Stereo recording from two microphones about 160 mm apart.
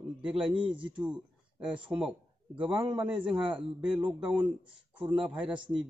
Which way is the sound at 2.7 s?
30° right (ahead or behind).